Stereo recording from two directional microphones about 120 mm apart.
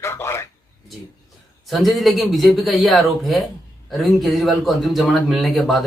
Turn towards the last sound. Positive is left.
turn(degrees=0)  # may be behind; listen again after turning